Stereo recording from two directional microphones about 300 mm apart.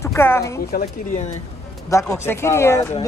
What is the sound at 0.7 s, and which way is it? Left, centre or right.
Speech, left.